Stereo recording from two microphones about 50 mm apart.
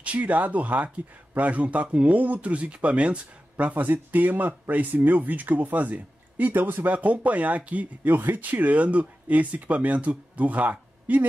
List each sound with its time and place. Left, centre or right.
0.0 s speech: right